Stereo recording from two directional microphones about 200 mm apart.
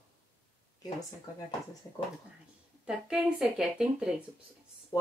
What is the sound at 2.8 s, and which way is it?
Speech, 5° right (ahead or behind).